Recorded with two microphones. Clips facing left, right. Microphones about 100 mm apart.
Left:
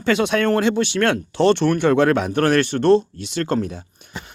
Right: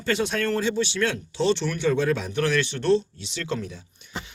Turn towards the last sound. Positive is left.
turn(degrees=55)  # may be behind; listen again after turning